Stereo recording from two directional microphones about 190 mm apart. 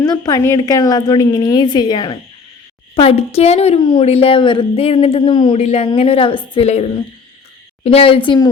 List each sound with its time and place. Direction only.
0.0 s a woman's voice: 20° left (ahead or behind); by 6.9 s 35° left (ahead or behind)
7.9 s a woman's voice: 30° left (ahead or behind)